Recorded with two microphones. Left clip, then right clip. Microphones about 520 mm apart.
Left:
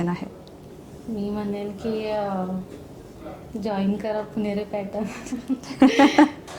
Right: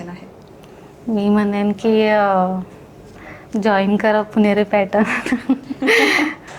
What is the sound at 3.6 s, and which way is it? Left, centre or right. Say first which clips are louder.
A woman's voice: right 11 dB; right.